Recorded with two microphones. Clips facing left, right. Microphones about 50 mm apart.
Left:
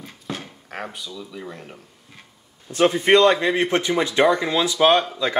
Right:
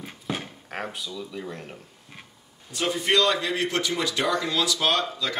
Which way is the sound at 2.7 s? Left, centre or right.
Left.